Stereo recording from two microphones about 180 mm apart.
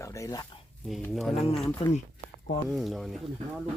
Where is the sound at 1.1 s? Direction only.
Centre (ahead or behind).